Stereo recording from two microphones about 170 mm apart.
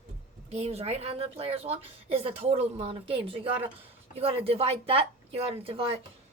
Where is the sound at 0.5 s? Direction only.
35° right (ahead or behind).